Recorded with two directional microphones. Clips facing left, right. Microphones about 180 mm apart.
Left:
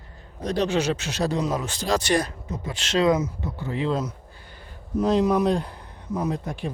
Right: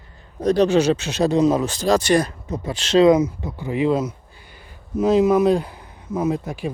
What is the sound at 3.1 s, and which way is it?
Speech, 15° right (ahead or behind).